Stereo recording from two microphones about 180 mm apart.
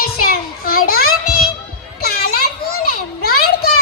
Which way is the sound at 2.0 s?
60° left (ahead or behind).